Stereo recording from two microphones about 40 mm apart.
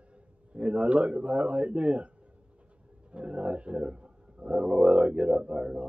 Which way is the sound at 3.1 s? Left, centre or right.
Right.